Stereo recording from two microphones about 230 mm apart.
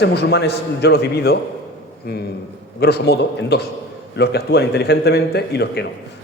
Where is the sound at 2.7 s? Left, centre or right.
Left.